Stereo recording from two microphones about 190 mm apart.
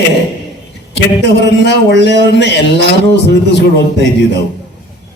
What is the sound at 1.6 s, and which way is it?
Speech, 60° left (ahead or behind).